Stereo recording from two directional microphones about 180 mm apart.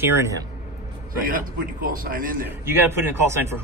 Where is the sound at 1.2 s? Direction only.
50° right (ahead or behind).